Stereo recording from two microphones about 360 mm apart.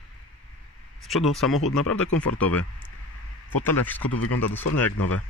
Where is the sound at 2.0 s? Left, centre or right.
Left.